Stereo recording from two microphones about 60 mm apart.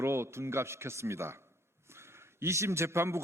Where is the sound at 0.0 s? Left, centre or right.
Right.